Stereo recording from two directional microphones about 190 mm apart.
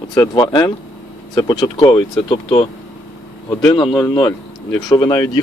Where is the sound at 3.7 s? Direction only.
25° left (ahead or behind).